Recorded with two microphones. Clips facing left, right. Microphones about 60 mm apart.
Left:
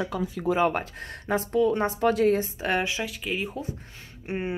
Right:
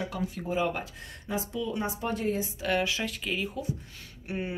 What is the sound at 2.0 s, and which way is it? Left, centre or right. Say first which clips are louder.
Speech: left 10 dB; left.